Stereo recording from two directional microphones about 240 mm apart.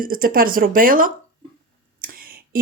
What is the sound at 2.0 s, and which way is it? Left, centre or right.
Whispering, right.